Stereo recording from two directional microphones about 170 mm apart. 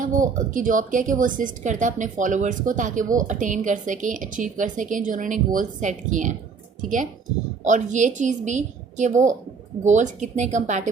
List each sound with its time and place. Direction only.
0.0 s a woman's voice: 50° right (ahead or behind)